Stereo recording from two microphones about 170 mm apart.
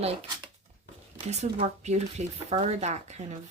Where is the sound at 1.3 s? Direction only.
40° right (ahead or behind).